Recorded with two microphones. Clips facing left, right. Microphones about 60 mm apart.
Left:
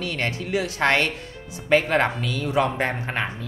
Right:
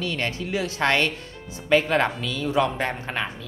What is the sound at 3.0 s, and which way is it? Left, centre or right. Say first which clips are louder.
Speech: left 2 dB; left.